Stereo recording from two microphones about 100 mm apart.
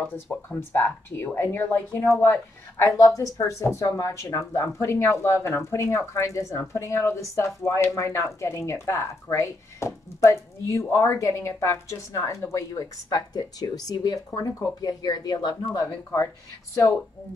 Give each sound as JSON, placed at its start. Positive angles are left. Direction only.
{"t": 0.3, "sound": "a woman's voice", "side_deg": 20}
{"t": 3.2, "sound": "a woman's voice", "side_deg": 35}
{"t": 12.7, "sound": "speech", "side_deg": 40}
{"t": 15.7, "sound": "speech", "side_deg": 30}